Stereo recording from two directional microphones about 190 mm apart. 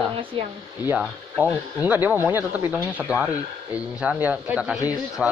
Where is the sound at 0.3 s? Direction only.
30° right (ahead or behind).